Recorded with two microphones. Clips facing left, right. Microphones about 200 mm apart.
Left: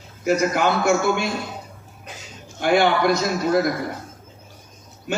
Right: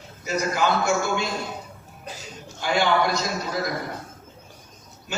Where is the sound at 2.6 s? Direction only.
60° left (ahead or behind).